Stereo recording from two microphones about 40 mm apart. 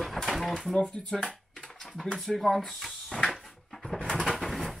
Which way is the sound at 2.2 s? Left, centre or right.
Centre.